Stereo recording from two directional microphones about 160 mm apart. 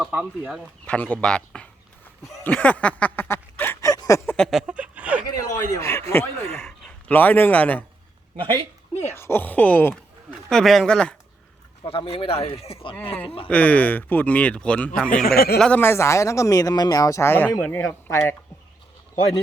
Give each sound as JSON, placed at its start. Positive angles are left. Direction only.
{"t": 0.0, "sound": "speech", "side_deg": -10}
{"t": 0.9, "sound": "speech", "side_deg": 10}
{"t": 2.4, "sound": "a sound", "side_deg": 5}
{"t": 4.5, "sound": "a sound", "side_deg": -5}
{"t": 5.3, "sound": "a man's voice", "side_deg": 20}
{"t": 9.1, "sound": "speech", "side_deg": 15}
{"t": 11.8, "sound": "speech", "side_deg": 35}
{"t": 13.5, "sound": "speech", "side_deg": 10}
{"t": 15.1, "sound": "speech", "side_deg": 70}
{"t": 15.5, "sound": "speech", "side_deg": 5}